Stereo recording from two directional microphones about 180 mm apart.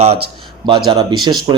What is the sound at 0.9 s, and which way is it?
Speech, 20° right (ahead or behind).